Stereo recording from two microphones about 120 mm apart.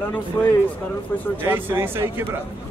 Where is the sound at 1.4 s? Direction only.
15° right (ahead or behind).